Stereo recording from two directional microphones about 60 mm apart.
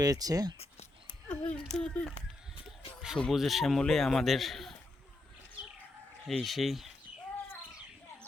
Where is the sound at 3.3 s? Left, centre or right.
Centre.